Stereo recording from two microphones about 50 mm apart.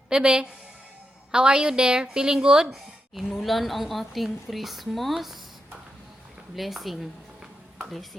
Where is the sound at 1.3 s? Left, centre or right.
Centre.